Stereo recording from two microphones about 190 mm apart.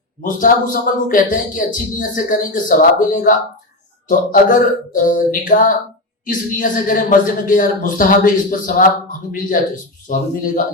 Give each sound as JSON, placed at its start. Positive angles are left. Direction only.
{"t": 0.2, "sound": "speech", "side_deg": 45}